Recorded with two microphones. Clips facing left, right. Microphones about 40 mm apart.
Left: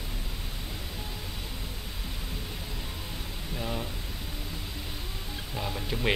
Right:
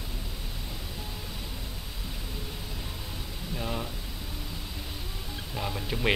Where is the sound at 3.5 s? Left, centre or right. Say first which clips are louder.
Even; centre.